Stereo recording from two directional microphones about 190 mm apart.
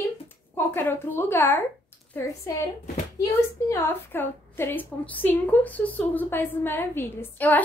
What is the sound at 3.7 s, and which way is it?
A woman's voice, 10° left (ahead or behind).